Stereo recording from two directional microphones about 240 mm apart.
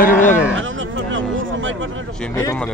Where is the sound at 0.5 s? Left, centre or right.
Right.